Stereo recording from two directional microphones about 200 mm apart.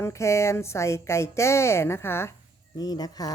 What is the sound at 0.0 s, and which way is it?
Speech, 15° left (ahead or behind).